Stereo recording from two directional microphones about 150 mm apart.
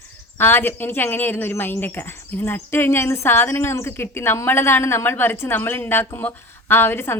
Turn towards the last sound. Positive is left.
turn(degrees=15)  # may be behind; listen again after turning